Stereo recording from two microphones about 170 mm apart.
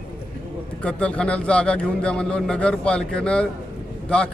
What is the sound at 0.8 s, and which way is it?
Speech, 5° left (ahead or behind).